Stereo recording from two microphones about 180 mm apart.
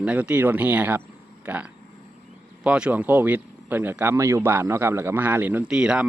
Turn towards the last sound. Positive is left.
turn(degrees=-5)  # may be behind; listen again after turning